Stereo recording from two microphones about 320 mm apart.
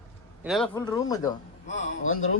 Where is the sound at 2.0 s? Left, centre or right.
Left.